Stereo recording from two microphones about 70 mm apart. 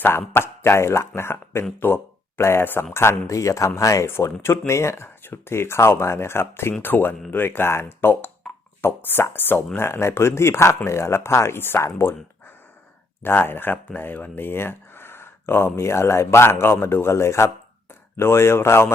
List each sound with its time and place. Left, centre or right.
0.0 s a man's voice: left